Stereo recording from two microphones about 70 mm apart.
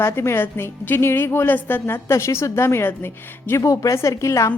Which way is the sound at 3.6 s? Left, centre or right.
Left.